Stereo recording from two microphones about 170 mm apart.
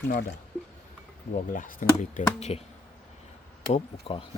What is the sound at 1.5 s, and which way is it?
Speech, 50° left (ahead or behind).